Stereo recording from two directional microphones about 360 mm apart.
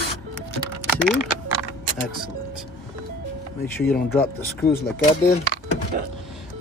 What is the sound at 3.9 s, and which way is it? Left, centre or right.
Speech, centre.